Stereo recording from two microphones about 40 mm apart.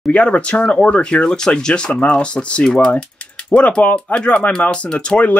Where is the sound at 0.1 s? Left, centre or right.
Left.